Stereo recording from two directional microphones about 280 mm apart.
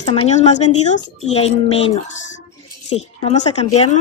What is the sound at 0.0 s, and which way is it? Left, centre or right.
A woman's voice, left.